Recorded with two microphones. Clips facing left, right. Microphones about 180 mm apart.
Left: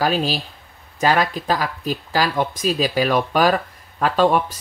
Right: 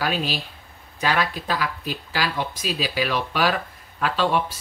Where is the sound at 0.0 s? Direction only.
40° left (ahead or behind).